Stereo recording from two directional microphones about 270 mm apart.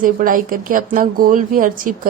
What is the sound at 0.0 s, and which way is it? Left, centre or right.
Speech, right.